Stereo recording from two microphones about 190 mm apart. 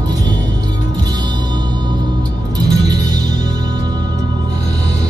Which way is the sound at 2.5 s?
20° right (ahead or behind).